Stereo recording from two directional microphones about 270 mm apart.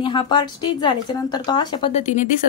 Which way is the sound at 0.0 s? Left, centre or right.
Centre.